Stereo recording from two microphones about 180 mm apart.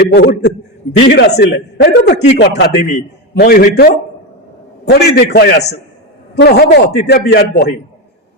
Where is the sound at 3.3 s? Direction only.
55° left (ahead or behind).